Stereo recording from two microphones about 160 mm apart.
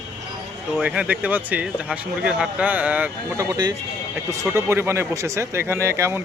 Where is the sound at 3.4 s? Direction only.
25° right (ahead or behind).